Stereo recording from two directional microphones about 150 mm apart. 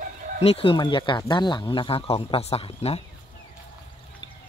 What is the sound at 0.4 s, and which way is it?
Speech, 40° left (ahead or behind).